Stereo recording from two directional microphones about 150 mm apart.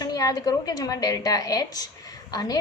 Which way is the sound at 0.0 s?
25° left (ahead or behind).